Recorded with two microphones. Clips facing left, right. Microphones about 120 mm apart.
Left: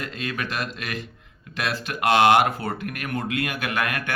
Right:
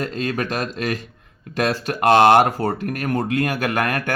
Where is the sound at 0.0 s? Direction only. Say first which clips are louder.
Right 7 dB; 40° right (ahead or behind).